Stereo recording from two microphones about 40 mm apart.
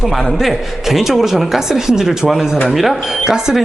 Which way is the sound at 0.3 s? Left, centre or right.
Centre.